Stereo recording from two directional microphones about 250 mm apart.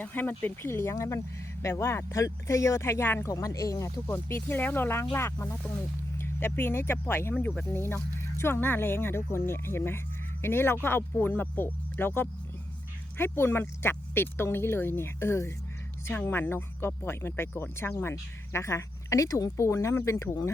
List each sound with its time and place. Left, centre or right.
0.0 s speech: centre